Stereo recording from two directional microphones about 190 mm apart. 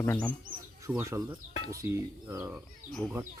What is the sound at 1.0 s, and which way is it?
Speech, 15° right (ahead or behind).